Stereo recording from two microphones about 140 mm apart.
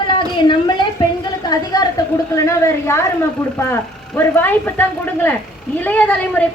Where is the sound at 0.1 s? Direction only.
35° left (ahead or behind).